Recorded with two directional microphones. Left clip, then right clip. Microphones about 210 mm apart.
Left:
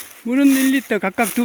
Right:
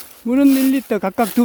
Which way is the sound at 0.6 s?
5° right (ahead or behind).